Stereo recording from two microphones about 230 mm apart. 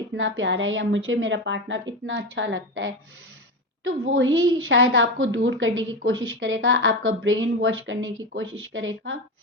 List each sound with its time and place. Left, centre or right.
0.2 s a woman's voice: right